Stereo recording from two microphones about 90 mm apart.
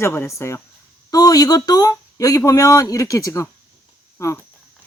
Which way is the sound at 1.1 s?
40° left (ahead or behind).